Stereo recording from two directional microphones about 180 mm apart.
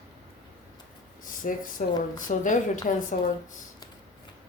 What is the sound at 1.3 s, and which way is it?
A woman's voice, 50° left (ahead or behind).